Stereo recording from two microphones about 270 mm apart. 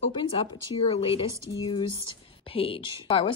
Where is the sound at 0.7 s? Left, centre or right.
Left.